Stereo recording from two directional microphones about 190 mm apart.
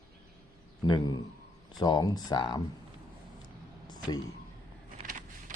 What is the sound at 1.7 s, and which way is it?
Speech, 20° left (ahead or behind).